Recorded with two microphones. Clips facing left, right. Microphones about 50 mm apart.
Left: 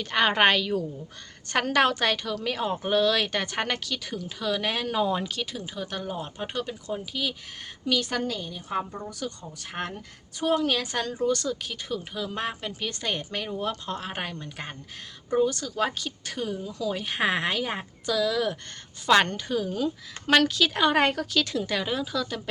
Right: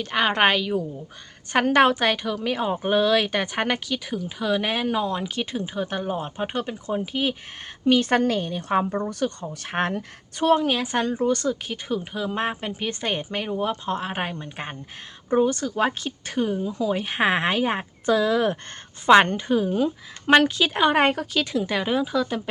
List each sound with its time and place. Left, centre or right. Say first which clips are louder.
0.0 s a woman's voice: right 1 dB; centre; by 7.3 s right
8.1 s a woman's voice: right 8 dB; right
10.5 s a woman's voice: right 4 dB; right